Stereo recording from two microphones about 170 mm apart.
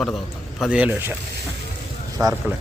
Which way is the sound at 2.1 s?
20° right (ahead or behind).